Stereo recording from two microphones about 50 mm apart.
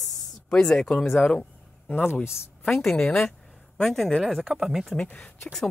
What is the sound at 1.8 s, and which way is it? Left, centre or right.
Speech, left.